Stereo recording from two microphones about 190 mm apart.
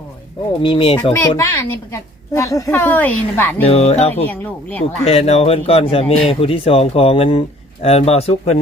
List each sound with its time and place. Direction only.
0.6 s speech: 25° left (ahead or behind)
1.4 s a woman's voice: 15° left (ahead or behind)
3.6 s a man's voice: 30° left (ahead or behind)
4.1 s a woman's voice: 10° left (ahead or behind)
5.0 s a man's voice: 35° left (ahead or behind)